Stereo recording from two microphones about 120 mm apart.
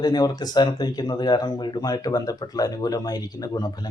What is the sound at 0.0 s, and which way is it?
Speech, 35° left (ahead or behind).